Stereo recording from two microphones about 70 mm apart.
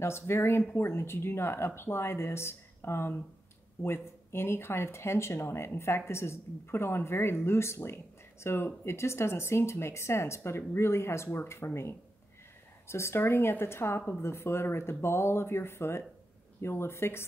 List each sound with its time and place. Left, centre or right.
0.0 s speech: left